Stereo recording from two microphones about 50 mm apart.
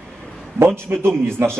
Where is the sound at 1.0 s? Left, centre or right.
Right.